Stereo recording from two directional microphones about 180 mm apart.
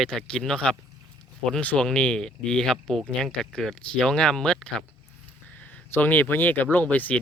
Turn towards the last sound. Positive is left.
turn(degrees=10)  # may be behind; listen again after turning